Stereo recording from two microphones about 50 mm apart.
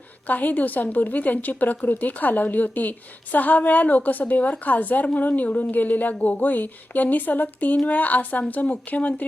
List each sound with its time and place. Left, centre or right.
0.3 s a woman's voice: left